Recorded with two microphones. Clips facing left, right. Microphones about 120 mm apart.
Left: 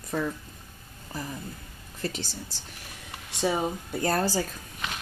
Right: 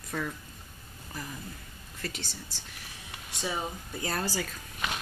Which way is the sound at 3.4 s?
30° left (ahead or behind).